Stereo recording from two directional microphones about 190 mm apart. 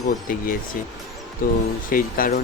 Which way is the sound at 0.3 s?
50° left (ahead or behind).